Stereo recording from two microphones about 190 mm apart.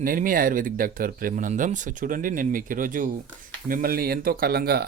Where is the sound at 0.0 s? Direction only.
45° right (ahead or behind).